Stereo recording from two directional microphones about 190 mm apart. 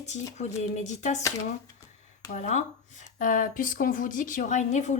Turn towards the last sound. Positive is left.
turn(degrees=40)  # may be behind; listen again after turning